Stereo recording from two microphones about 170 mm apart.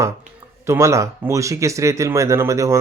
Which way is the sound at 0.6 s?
15° right (ahead or behind).